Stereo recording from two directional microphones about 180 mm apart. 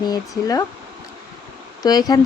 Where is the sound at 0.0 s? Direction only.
20° left (ahead or behind).